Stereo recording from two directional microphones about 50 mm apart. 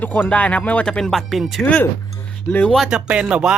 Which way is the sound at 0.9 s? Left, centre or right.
Centre.